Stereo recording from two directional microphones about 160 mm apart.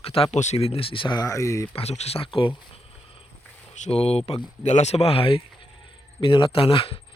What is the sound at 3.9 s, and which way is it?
Speech, 40° left (ahead or behind).